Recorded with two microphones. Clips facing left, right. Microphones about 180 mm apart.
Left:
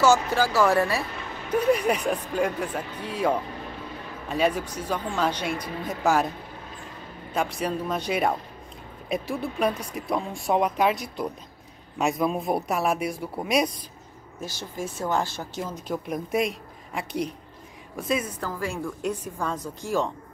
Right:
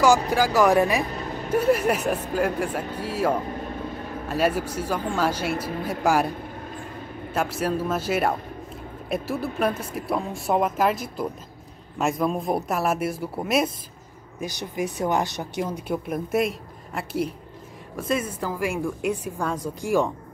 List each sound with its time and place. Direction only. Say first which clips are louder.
0.3 s a woman's voice: right 2 dB; 15° right (ahead or behind)
1.0 s a sound: right 5 dB; 40° right (ahead or behind)
1.5 s a woman's voice: right 1 dB; 5° right (ahead or behind)
7.3 s speech: right 2 dB; 5° right (ahead or behind)
14.4 s a woman's voice: right 5 dB; 15° right (ahead or behind); by 18.2 s centre (ahead or behind)
18.4 s a woman's voice: right 4 dB; 10° right (ahead or behind)